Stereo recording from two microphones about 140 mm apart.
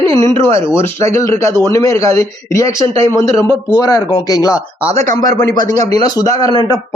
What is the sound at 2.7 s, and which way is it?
Speech, 35° right (ahead or behind).